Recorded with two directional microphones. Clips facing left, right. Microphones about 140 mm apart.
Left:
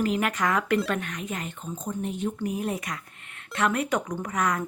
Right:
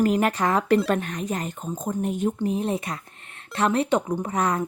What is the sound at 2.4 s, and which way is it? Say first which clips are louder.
A woman's voice: right 4 dB; 25° right (ahead or behind).